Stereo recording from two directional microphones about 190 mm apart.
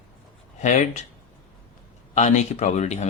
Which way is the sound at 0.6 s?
40° left (ahead or behind).